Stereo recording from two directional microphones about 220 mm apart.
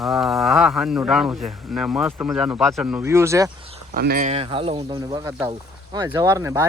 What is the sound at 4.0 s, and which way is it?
Speech, 40° right (ahead or behind).